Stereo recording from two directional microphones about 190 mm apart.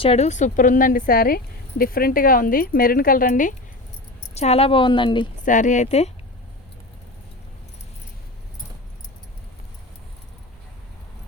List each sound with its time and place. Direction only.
0.0 s speech: 35° left (ahead or behind)
4.4 s a woman's voice: 35° left (ahead or behind)
5.5 s speech: 40° left (ahead or behind)